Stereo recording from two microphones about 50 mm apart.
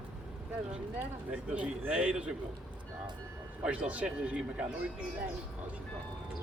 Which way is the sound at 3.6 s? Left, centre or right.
Right.